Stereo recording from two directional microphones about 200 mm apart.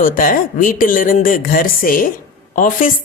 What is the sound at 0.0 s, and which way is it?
A woman's voice, 45° left (ahead or behind).